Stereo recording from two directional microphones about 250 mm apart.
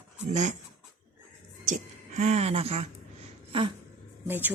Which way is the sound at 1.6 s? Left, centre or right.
Right.